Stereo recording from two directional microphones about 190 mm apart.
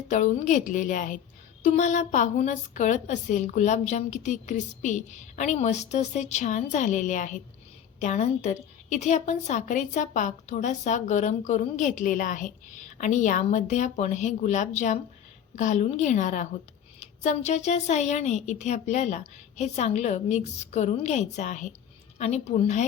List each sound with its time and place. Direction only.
0.1 s a woman's voice: 40° left (ahead or behind)